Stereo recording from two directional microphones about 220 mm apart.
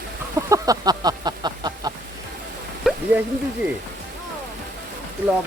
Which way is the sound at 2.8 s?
Centre (ahead or behind).